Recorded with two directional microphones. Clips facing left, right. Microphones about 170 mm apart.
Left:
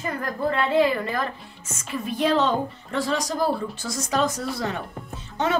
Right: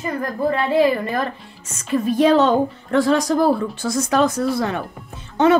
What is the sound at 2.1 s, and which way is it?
A woman's voice, 45° right (ahead or behind).